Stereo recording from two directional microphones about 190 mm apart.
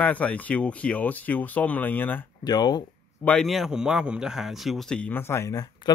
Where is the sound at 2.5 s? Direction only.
20° left (ahead or behind).